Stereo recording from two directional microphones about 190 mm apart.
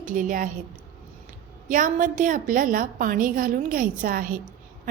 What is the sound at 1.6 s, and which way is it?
A woman's voice, 45° right (ahead or behind).